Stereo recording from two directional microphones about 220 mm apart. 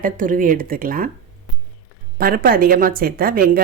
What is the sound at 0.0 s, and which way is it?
Speech, 35° right (ahead or behind).